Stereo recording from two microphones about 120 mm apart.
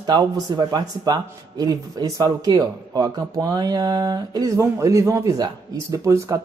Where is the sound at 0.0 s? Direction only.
35° right (ahead or behind).